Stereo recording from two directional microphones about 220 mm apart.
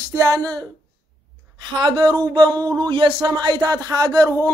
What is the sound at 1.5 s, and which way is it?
Speech, 20° right (ahead or behind).